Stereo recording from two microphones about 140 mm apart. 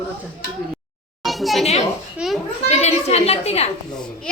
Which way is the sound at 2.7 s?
50° left (ahead or behind).